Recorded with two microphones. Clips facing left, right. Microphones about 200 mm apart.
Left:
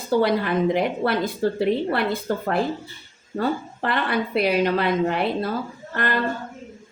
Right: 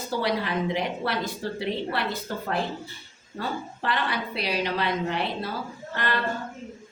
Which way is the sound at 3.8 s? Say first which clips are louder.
Left 5 dB; 55° left (ahead or behind).